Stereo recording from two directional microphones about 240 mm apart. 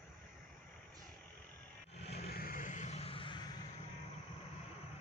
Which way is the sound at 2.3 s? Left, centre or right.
Left.